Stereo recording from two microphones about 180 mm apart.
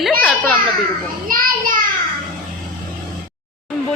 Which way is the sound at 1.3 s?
50° right (ahead or behind).